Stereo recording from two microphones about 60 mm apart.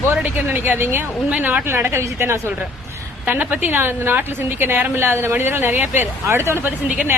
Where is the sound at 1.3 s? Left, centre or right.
Right.